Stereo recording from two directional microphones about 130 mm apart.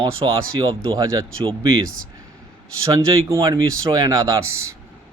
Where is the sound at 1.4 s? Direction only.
40° right (ahead or behind).